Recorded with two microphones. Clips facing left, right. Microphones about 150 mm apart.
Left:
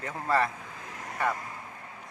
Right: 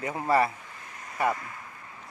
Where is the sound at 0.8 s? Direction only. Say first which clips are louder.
Left 5 dB; 90° left.